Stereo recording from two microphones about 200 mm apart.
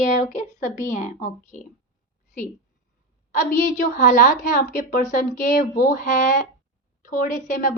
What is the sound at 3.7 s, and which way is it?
Speech, 40° left (ahead or behind).